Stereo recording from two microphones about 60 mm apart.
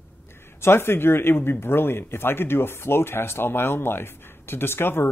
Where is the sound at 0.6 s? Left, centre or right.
Left.